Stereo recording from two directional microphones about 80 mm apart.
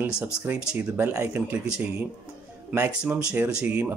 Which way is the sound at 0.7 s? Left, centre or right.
Right.